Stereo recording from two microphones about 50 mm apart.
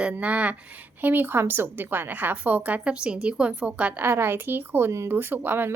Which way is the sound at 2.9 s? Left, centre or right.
Centre.